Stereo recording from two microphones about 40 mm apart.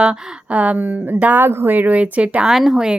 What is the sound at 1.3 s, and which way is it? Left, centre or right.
Speech, right.